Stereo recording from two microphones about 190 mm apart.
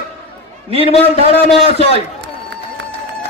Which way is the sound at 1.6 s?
30° right (ahead or behind).